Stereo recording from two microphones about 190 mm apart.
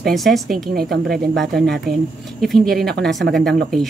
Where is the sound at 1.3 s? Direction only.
Centre (ahead or behind).